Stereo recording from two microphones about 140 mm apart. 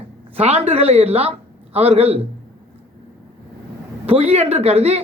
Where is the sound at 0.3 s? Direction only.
45° right (ahead or behind).